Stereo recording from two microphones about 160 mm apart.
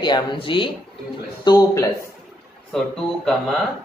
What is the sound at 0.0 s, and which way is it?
Speech, 30° left (ahead or behind).